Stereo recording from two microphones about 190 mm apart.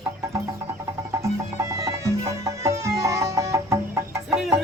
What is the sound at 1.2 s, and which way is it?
Music, 15° right (ahead or behind).